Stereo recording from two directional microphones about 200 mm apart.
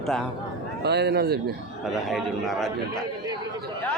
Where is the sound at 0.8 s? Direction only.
55° right (ahead or behind).